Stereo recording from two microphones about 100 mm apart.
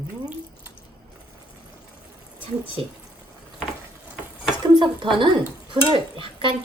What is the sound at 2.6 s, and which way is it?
Speech, 70° right (ahead or behind).